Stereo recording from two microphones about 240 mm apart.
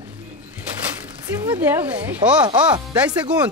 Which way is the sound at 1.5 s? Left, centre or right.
Centre.